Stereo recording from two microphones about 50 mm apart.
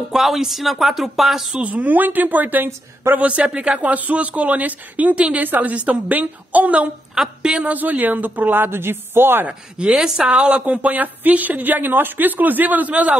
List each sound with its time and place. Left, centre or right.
0.1 s speech: centre
1.5 s speech: right
3.2 s speech: right
5.4 s speech: right
7.2 s speech: centre
7.5 s speech: right
9.5 s speech: centre
10.6 s speech: right